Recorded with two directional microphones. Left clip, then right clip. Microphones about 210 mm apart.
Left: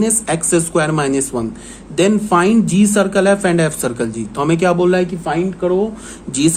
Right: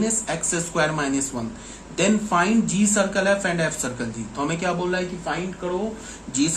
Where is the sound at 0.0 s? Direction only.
55° left (ahead or behind).